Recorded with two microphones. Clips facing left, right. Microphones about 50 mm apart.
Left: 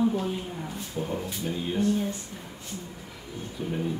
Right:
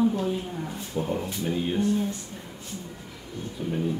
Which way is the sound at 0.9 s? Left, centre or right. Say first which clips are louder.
Right 3 dB; centre.